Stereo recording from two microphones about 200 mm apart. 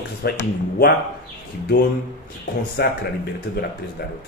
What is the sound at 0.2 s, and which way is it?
Speech, 50° left (ahead or behind).